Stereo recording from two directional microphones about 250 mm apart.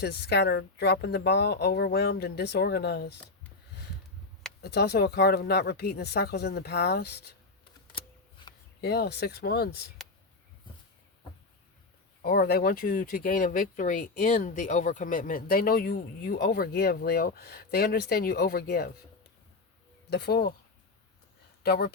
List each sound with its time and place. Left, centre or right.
0.0 s speech: left
4.6 s speech: left
8.8 s speech: left
12.2 s speech: left
20.1 s speech: left
21.6 s speech: left